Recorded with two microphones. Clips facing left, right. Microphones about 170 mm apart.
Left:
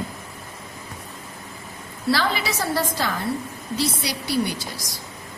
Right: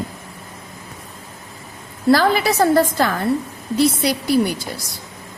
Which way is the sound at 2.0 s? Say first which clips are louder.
Right 8 dB; 50° right (ahead or behind).